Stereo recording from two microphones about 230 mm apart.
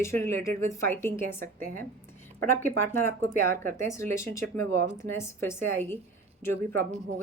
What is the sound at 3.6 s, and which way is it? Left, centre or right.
Speech, centre.